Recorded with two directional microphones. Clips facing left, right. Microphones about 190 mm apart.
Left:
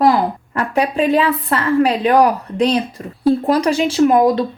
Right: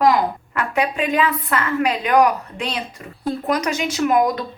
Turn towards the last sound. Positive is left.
turn(degrees=30)  # may be behind; listen again after turning